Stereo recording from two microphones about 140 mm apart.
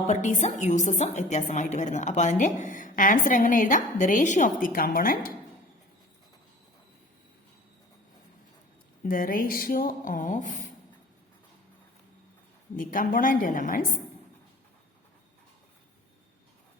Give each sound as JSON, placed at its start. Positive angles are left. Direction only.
{"t": 0.1, "sound": "a woman's voice", "side_deg": 60}
{"t": 9.0, "sound": "speech", "side_deg": 90}
{"t": 12.7, "sound": "speech", "side_deg": 75}